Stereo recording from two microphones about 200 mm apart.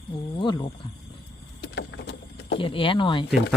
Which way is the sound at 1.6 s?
65° left (ahead or behind).